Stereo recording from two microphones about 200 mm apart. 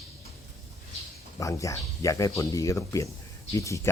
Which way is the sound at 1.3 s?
15° left (ahead or behind).